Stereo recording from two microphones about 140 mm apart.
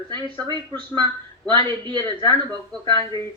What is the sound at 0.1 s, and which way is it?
A man's voice, 30° right (ahead or behind).